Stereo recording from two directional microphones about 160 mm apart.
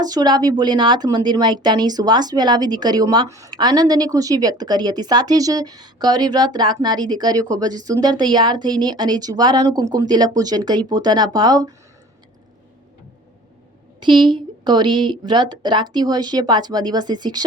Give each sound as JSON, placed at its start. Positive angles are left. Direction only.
{"t": 0.0, "sound": "speech", "side_deg": -25}
{"t": 14.0, "sound": "a woman's voice", "side_deg": -30}